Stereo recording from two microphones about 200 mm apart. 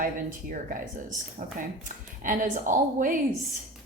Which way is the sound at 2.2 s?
40° right (ahead or behind).